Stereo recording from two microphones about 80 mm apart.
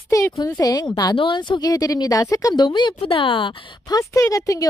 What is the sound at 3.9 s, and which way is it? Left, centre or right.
Speech, left.